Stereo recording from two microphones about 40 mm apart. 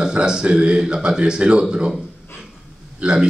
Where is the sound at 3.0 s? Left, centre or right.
Right.